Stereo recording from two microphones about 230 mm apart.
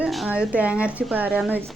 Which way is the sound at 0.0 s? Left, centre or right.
Centre.